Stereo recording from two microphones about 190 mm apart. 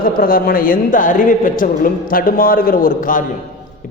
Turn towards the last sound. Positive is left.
turn(degrees=45)  # may be behind; listen again after turning